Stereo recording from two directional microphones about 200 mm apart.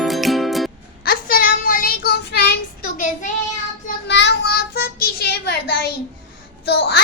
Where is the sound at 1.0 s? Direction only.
45° left (ahead or behind).